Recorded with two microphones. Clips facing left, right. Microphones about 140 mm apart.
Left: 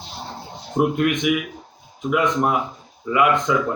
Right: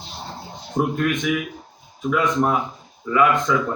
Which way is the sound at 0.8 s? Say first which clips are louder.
Left 2 dB; 15° left (ahead or behind).